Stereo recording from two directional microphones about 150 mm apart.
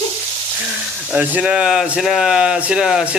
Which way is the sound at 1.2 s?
5° right (ahead or behind).